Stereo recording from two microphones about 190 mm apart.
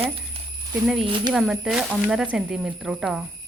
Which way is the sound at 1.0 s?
25° right (ahead or behind).